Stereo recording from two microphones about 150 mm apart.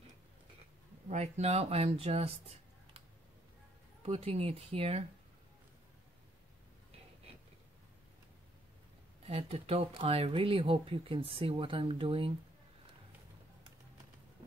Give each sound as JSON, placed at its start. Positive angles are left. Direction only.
{"t": 1.0, "sound": "speech", "side_deg": -50}
{"t": 4.0, "sound": "speech", "side_deg": -40}
{"t": 9.3, "sound": "speech", "side_deg": -40}